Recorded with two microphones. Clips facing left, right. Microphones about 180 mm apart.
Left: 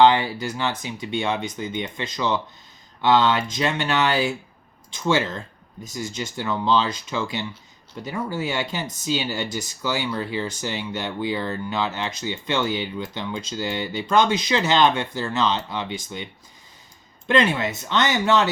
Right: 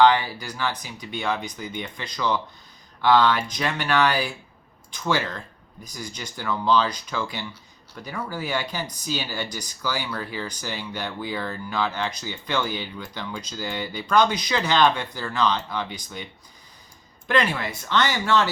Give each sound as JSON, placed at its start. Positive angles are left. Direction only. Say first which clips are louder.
{"t": 0.0, "sound": "speech", "louder": "left 2 dB", "side_deg": 25}
{"t": 17.2, "sound": "speech", "louder": "left 3 dB", "side_deg": 25}